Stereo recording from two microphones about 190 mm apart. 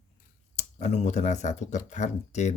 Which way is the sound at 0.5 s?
35° left (ahead or behind).